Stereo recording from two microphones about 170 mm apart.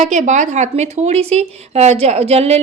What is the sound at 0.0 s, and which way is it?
Speech, 45° right (ahead or behind).